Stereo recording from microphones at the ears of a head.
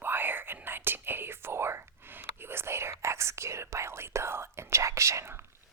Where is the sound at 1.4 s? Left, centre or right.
Right.